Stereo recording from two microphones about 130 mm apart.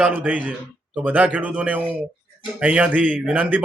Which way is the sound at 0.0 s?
10° right (ahead or behind).